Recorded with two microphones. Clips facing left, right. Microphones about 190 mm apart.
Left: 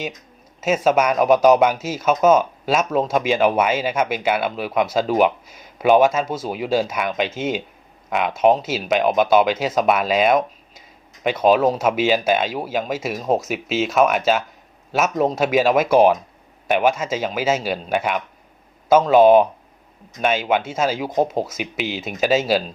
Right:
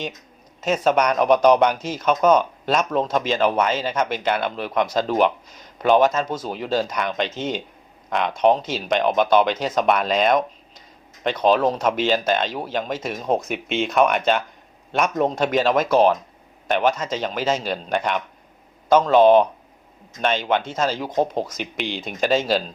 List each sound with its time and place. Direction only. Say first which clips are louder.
0.6 s speech: left 2 dB; 5° left (ahead or behind)